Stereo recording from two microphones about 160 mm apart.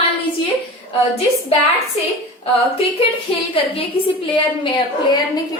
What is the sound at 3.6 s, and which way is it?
Speech, 35° left (ahead or behind).